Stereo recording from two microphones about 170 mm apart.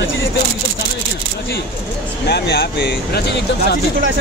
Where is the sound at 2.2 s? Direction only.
80° left.